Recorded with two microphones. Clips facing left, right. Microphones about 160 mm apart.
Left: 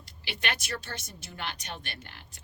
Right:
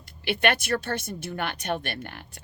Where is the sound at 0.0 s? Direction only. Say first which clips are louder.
Right 12 dB; 55° right (ahead or behind).